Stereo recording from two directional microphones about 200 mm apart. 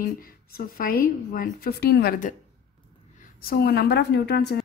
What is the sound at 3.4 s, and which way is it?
A woman's voice, 50° left (ahead or behind).